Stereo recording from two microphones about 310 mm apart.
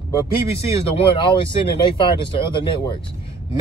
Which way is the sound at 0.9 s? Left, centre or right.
Centre.